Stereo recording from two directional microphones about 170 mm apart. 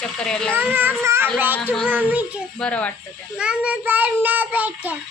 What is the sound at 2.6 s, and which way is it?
Speech, 5° left (ahead or behind).